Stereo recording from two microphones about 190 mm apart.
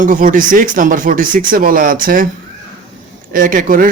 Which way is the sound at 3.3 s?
45° right (ahead or behind).